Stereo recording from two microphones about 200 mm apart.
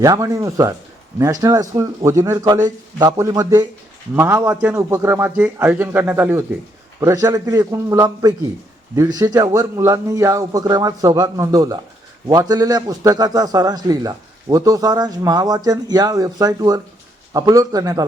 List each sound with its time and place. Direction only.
0.0 s a man's voice: 15° right (ahead or behind)